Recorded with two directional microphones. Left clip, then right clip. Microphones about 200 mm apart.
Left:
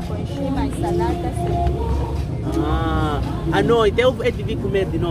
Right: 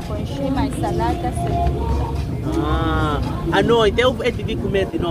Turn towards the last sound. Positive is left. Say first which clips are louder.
# right 1 dB
turn(degrees=0)  # may be behind; listen again after turning